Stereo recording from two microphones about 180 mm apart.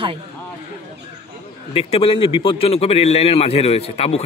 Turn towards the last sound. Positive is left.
turn(degrees=35)  # may be behind; listen again after turning